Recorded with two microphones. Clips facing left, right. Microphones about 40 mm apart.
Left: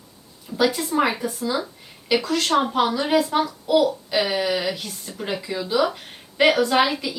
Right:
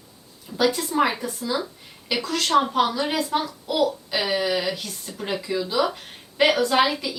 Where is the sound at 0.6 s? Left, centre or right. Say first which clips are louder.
Left 1 dB; centre.